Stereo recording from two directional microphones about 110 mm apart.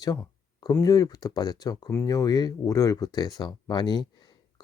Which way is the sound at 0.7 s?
35° left (ahead or behind).